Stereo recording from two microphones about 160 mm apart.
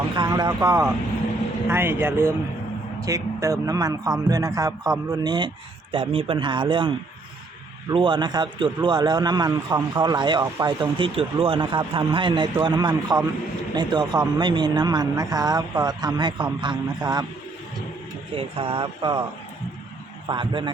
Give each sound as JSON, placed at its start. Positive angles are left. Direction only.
{"t": 0.2, "sound": "a man's voice", "side_deg": -25}
{"t": 18.3, "sound": "a man's voice", "side_deg": -35}
{"t": 20.2, "sound": "a man's voice", "side_deg": -30}